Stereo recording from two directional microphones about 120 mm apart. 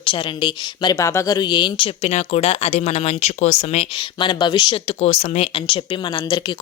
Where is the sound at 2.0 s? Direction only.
65° left (ahead or behind).